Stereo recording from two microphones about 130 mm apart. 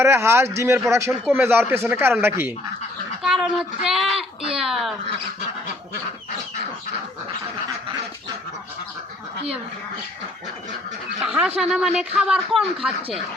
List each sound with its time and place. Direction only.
0.0 s speech: 20° right (ahead or behind)
3.2 s speech: 5° right (ahead or behind)
11.2 s speech: 5° right (ahead or behind)